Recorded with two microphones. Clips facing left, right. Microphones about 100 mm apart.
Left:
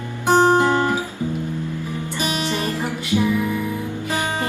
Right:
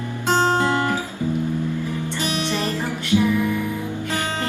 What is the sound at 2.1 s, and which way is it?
Music, 15° left (ahead or behind).